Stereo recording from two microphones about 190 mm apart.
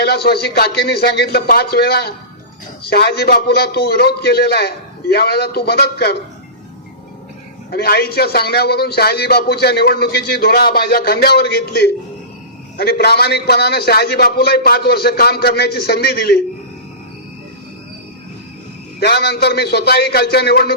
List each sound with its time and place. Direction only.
0.0 s a man's voice: 55° left (ahead or behind)
7.7 s a man's voice: 55° left (ahead or behind)
18.9 s a man's voice: 60° left (ahead or behind)